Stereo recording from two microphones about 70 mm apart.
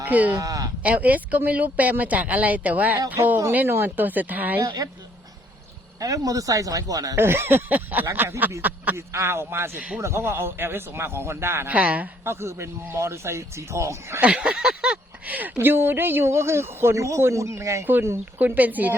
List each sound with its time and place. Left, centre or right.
0.1 s speech: right
0.3 s speech: right
0.8 s speech: right
4.6 s speech: right
6.0 s speech: right
7.2 s speech: right
9.0 s speech: right
11.7 s speech: right
12.2 s speech: right
14.2 s a sound: centre
15.3 s speech: right
17.8 s speech: right